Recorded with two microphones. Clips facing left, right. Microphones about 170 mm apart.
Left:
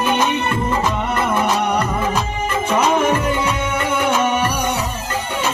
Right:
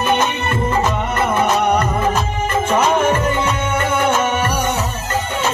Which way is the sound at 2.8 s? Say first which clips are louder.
Even; 50° right (ahead or behind).